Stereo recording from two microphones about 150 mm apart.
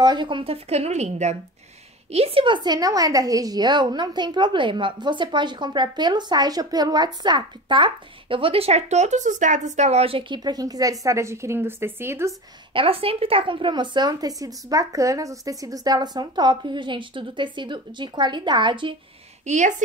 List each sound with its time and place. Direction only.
0.0 s a woman's voice: 30° right (ahead or behind)
12.7 s a woman's voice: 40° right (ahead or behind)
19.4 s a woman's voice: 50° right (ahead or behind)